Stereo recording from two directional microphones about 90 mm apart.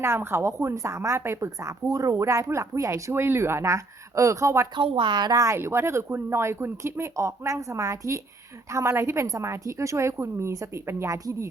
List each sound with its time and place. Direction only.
0.0 s a woman's voice: 25° right (ahead or behind)
4.7 s speech: 70° right (ahead or behind); by 5.4 s 55° right (ahead or behind)
5.4 s a woman's voice: 30° right (ahead or behind)